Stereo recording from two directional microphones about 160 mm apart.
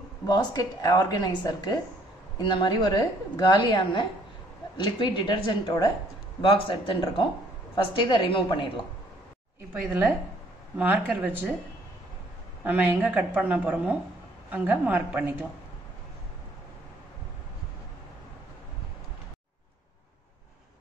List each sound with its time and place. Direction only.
0.3 s a woman's voice: 25° left (ahead or behind)
9.8 s a woman's voice: 10° right (ahead or behind)
12.6 s a woman's voice: 10° right (ahead or behind)